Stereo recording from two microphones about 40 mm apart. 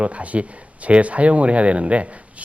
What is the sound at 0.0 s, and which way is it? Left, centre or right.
Speech, right.